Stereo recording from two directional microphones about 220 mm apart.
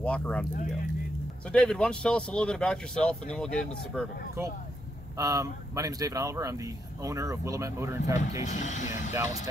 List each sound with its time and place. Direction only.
0.0 s speech: 5° left (ahead or behind)
1.5 s speech: 5° left (ahead or behind)
5.1 s speech: 15° right (ahead or behind)
8.2 s speech: 35° left (ahead or behind)
9.1 s speech: 15° right (ahead or behind)